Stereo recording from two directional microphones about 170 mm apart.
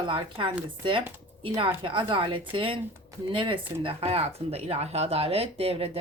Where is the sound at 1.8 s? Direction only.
30° right (ahead or behind).